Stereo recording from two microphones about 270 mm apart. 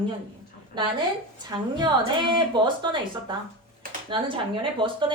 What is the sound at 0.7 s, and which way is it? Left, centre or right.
A woman's voice, centre.